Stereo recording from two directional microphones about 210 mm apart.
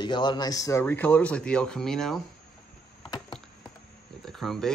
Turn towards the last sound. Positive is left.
turn(degrees=0)  # may be behind; listen again after turning